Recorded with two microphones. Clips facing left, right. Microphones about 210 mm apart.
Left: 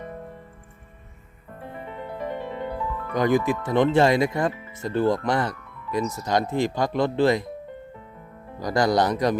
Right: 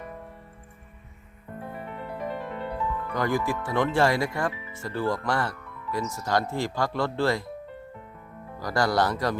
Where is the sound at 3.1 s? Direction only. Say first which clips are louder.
Left 6 dB; 20° left (ahead or behind).